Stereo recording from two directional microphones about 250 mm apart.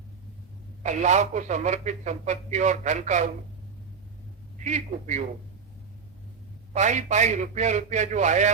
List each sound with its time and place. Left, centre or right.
0.8 s speech: right
4.6 s speech: right
6.7 s speech: right